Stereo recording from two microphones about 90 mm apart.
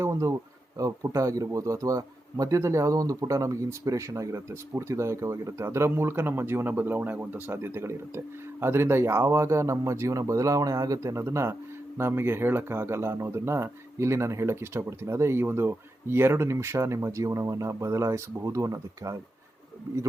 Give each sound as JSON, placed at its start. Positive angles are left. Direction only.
{"t": 0.0, "sound": "speech", "side_deg": -35}